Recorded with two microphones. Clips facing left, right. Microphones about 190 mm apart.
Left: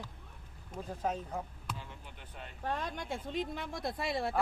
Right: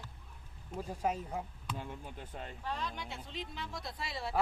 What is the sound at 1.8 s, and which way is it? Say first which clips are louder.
Speech: right 5 dB; 50° right (ahead or behind).